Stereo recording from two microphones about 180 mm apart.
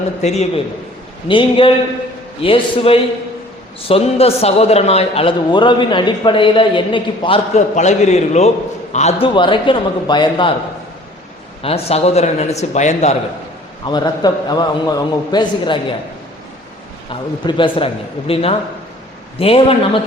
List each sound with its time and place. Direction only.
0.2 s a man's voice: 35° left (ahead or behind)
11.6 s a man's voice: 35° left (ahead or behind)
13.8 s a man's voice: 25° left (ahead or behind)
17.1 s a man's voice: 30° left (ahead or behind)